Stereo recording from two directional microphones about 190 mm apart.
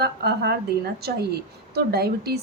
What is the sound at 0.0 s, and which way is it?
A woman's voice, 60° right (ahead or behind).